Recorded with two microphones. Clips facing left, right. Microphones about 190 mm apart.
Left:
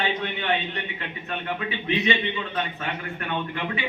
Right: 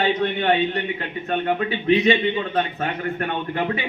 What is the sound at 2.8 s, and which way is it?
Speech, 45° right (ahead or behind).